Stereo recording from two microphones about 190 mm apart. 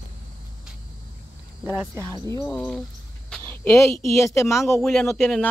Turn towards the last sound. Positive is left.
turn(degrees=10)  # may be behind; listen again after turning